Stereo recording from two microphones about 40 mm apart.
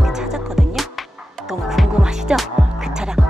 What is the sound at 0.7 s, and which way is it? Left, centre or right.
Music, centre.